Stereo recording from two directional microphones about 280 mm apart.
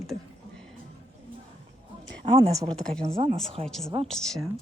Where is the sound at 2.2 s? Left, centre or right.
Right.